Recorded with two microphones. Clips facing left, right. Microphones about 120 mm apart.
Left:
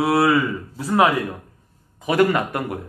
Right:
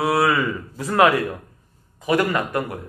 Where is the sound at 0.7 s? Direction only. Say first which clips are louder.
Left 3 dB; 15° left (ahead or behind).